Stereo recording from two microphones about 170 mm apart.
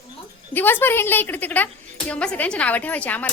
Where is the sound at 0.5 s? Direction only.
10° left (ahead or behind).